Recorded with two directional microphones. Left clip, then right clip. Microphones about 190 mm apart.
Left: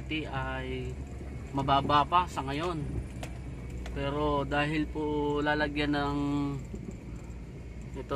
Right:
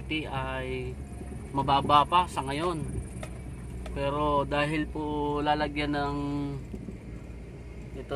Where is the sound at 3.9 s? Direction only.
15° right (ahead or behind); by 6.5 s 10° left (ahead or behind).